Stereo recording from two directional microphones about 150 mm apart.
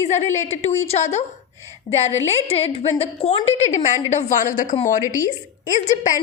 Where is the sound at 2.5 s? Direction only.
40° left (ahead or behind); by 4.8 s 60° left (ahead or behind).